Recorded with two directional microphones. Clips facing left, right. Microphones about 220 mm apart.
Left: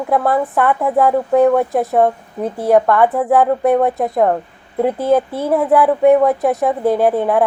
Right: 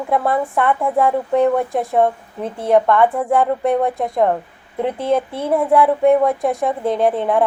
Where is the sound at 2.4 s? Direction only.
45° left (ahead or behind).